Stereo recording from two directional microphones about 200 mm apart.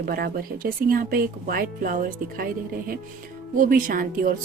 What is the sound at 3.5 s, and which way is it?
Speech, 40° right (ahead or behind).